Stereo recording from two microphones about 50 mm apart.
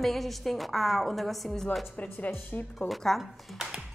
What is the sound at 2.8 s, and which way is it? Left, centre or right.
Speech, centre.